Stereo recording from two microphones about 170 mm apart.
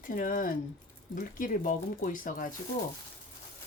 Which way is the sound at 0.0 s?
55° left (ahead or behind).